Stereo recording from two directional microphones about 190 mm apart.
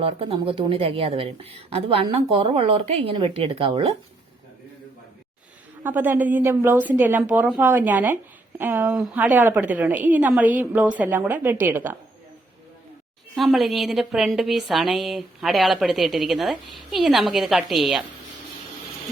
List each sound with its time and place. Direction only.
0.0 s a woman's voice: 30° right (ahead or behind)
5.8 s speech: 10° right (ahead or behind)
13.3 s a woman's voice: centre (ahead or behind)